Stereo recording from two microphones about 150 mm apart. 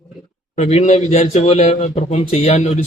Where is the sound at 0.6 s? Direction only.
50° left (ahead or behind).